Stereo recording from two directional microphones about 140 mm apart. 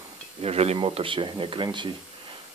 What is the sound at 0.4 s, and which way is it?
Speech, 45° right (ahead or behind).